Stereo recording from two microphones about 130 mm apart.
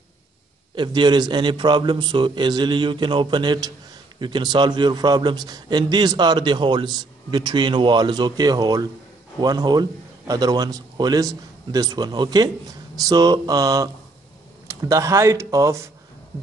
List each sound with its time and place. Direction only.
0.7 s a man's voice: 35° right (ahead or behind)